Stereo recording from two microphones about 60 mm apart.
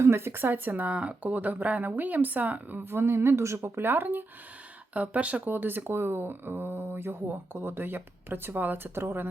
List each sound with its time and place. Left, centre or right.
0.0 s speech: right
0.7 s speech: right
2.8 s a woman's voice: right
3.8 s speech: right
4.9 s speech: right